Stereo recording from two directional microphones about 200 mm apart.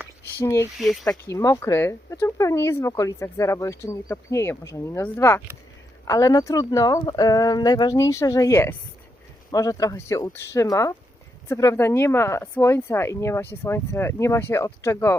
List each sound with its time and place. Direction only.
0.3 s speech: 15° left (ahead or behind)
0.8 s speech: centre (ahead or behind)
1.2 s speech: 15° left (ahead or behind)